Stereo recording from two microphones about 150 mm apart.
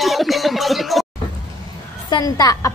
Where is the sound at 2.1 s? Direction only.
25° left (ahead or behind).